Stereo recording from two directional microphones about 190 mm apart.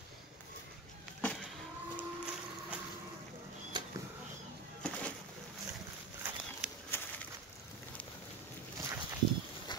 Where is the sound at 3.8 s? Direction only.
25° right (ahead or behind).